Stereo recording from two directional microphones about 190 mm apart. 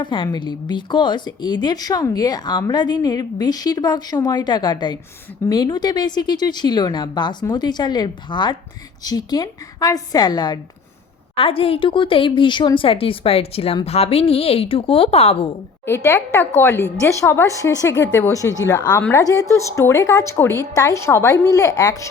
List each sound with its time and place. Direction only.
0.0 s a woman's voice: 25° left (ahead or behind)
16.0 s a woman's voice: 10° left (ahead or behind)